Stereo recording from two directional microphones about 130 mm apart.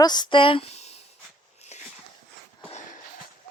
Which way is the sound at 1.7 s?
60° left (ahead or behind).